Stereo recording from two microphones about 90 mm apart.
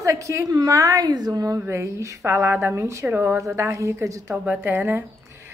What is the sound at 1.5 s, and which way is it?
A woman's voice, 30° right (ahead or behind).